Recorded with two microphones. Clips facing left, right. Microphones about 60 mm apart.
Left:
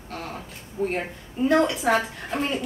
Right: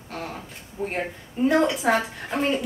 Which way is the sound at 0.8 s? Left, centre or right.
Centre.